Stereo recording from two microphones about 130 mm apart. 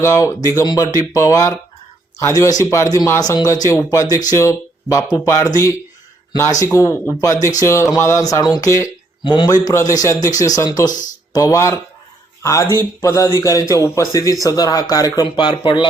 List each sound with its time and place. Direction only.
0.0 s speech: 20° left (ahead or behind)
9.2 s speech: 35° left (ahead or behind)